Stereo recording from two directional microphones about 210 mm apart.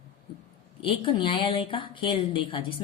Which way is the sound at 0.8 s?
25° left (ahead or behind).